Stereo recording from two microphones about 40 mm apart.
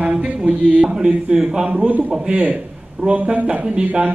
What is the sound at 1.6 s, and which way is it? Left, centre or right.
Speech, right.